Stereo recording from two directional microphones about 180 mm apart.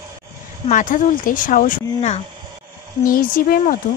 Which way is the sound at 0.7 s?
45° left (ahead or behind).